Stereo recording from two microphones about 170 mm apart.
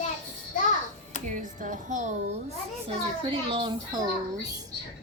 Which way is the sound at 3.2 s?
30° right (ahead or behind).